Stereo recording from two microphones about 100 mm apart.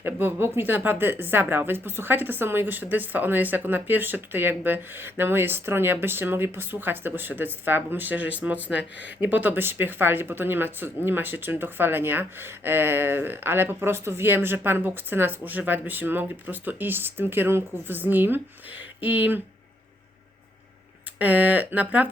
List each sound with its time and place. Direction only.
0.0 s speech: 20° right (ahead or behind)
21.2 s speech: 15° right (ahead or behind)